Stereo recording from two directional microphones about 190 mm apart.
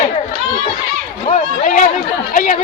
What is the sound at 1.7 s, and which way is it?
Chatter, 40° left (ahead or behind).